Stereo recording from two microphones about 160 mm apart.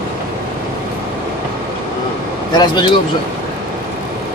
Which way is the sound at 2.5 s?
30° left (ahead or behind).